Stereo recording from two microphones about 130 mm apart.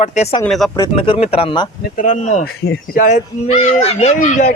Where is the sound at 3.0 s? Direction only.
60° left (ahead or behind).